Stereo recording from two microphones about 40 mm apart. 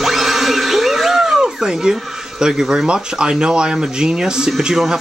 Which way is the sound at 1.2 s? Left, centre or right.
Centre.